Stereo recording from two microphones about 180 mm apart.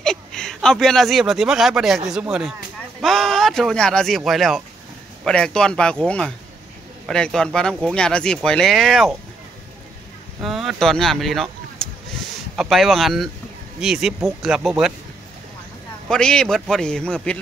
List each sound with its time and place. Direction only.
0.0 s speech: 5° left (ahead or behind)
10.4 s speech: centre (ahead or behind)
16.1 s speech: 5° left (ahead or behind)